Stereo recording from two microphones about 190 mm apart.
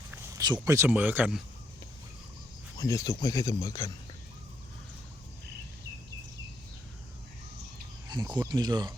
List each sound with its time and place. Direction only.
0.1 s speech: 15° right (ahead or behind)
2.7 s speech: 20° left (ahead or behind)
8.0 s cricket: 20° right (ahead or behind)
8.4 s speech: 20° right (ahead or behind)